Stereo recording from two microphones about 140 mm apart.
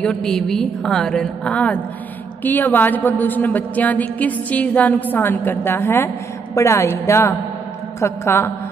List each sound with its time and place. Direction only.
0.0 s a woman's voice: 5° left (ahead or behind)